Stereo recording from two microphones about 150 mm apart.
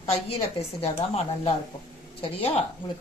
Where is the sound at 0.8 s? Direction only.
40° left (ahead or behind).